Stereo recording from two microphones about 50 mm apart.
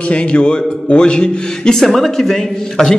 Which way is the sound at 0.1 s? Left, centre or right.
Left.